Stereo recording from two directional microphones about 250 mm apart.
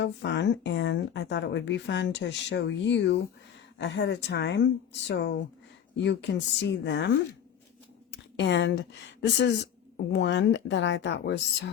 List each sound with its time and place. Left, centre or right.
0.0 s speech: left
8.4 s speech: left
10.2 s speech: left